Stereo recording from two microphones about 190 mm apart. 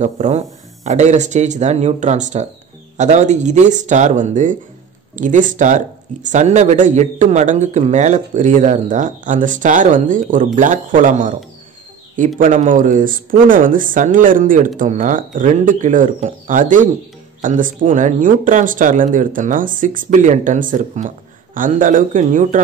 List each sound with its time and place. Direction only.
0.0 s speech: 40° right (ahead or behind)
12.4 s speech: 45° right (ahead or behind)